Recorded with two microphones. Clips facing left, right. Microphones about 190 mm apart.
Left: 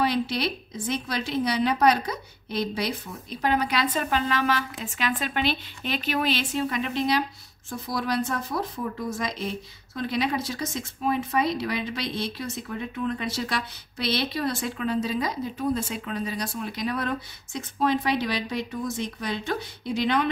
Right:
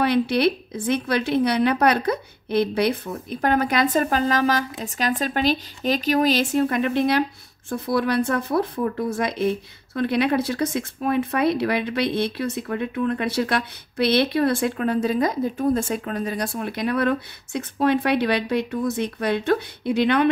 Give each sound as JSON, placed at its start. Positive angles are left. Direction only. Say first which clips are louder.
{"t": 0.0, "sound": "a woman's voice", "louder": "right 6 dB", "side_deg": -60}